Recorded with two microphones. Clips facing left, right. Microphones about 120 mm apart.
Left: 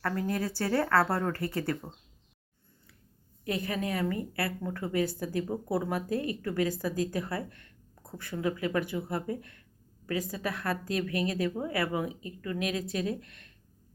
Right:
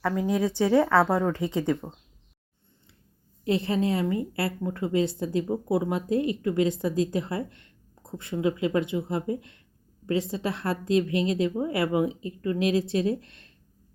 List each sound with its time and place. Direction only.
0.0 s speech: 10° right (ahead or behind)
3.4 s speech: 25° right (ahead or behind)